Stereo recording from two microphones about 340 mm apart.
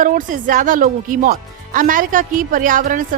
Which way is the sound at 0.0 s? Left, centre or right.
Right.